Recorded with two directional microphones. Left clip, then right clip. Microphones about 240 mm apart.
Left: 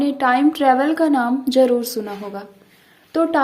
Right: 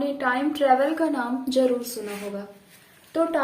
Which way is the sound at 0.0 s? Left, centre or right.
Left.